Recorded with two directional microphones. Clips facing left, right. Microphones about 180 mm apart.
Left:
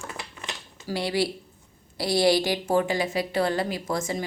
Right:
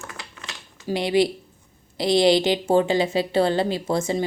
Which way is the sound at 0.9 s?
20° right (ahead or behind).